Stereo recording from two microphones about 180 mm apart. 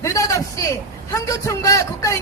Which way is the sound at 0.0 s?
15° left (ahead or behind).